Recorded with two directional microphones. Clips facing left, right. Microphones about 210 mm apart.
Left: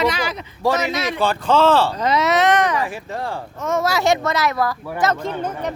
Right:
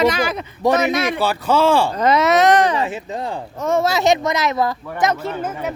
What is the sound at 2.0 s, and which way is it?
Speech, 50° right (ahead or behind).